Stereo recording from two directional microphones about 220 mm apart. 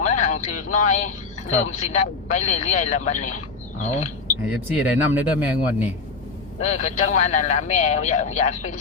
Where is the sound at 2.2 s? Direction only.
30° left (ahead or behind).